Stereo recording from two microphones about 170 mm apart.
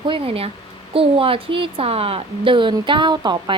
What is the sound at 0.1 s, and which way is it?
A woman's voice, 35° right (ahead or behind).